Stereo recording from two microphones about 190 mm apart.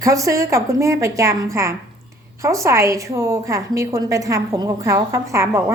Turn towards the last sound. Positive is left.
turn(degrees=-15)  # may be behind; listen again after turning